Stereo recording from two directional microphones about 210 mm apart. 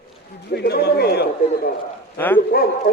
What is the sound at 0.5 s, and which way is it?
Speech, 50° left (ahead or behind).